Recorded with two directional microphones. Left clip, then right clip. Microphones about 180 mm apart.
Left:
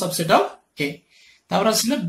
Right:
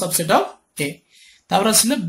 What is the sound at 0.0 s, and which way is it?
Speech, 20° right (ahead or behind).